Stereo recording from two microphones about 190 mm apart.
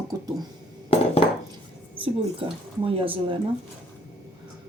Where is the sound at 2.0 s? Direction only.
30° right (ahead or behind).